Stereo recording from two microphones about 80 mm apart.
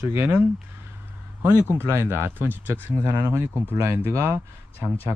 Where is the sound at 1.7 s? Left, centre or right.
Right.